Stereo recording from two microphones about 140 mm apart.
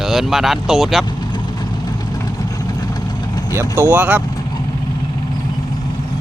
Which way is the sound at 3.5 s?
20° right (ahead or behind).